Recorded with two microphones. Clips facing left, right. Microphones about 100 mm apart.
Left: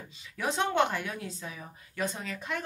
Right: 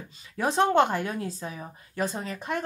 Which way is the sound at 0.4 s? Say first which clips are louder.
Right 6 dB; 35° right (ahead or behind).